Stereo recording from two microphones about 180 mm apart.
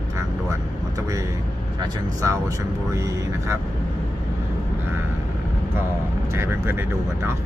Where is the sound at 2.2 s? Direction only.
15° right (ahead or behind).